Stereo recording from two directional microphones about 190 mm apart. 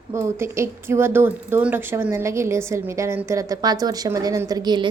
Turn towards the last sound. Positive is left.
turn(degrees=-20)  # may be behind; listen again after turning